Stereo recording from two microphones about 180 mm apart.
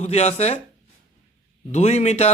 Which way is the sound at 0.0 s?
35° left (ahead or behind).